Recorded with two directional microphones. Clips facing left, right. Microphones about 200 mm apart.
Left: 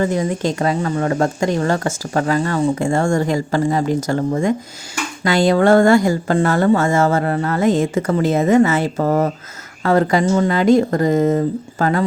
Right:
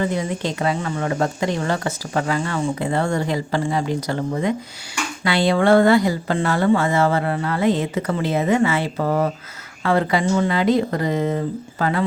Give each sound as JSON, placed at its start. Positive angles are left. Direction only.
{"t": 0.0, "sound": "speech", "side_deg": 45}